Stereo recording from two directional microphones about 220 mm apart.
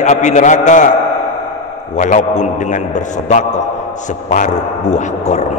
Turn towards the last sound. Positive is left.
turn(degrees=30)  # may be behind; listen again after turning